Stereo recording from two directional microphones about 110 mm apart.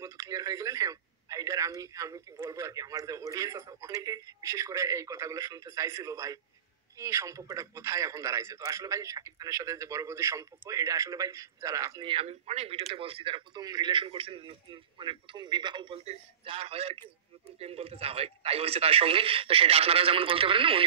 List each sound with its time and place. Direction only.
0.0 s a man's voice: 30° right (ahead or behind)
12.0 s speech: 55° right (ahead or behind)
16.0 s speech: 65° right (ahead or behind)